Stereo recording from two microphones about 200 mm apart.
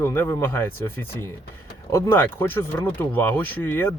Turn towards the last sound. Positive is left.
turn(degrees=10)  # may be behind; listen again after turning